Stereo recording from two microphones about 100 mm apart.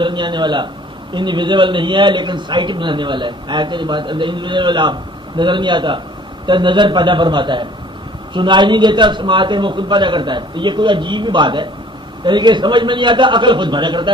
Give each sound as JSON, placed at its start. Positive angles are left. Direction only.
{"t": 0.0, "sound": "a man's voice", "side_deg": -50}